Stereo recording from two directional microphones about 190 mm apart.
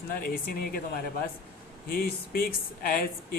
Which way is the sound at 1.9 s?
50° left (ahead or behind).